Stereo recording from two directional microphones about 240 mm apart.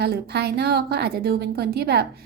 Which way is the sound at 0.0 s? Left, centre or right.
Right.